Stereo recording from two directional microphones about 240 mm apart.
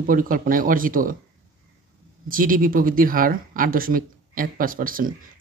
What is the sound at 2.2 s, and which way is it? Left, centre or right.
Speech, right.